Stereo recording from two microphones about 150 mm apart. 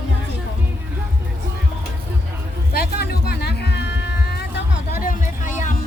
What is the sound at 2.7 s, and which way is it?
Music, 90° left.